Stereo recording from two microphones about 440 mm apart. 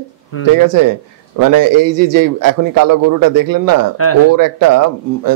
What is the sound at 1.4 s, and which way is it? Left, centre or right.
Speech, right.